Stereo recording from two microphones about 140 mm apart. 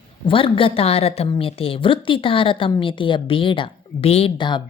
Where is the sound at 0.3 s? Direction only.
40° left (ahead or behind).